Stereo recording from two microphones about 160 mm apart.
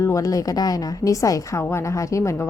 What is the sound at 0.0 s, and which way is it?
A woman's voice, 20° left (ahead or behind).